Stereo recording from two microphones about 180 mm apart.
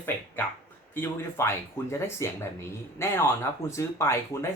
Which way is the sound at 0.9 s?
15° left (ahead or behind).